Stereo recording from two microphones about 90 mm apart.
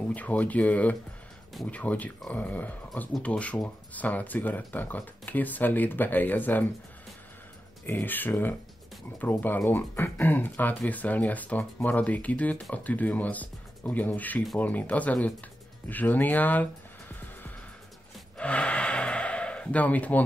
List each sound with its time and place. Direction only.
0.1 s speech: 15° left (ahead or behind)
7.8 s speech: 20° left (ahead or behind)
18.4 s gasp: 15° left (ahead or behind)